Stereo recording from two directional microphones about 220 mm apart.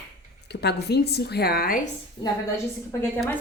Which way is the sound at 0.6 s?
45° left (ahead or behind).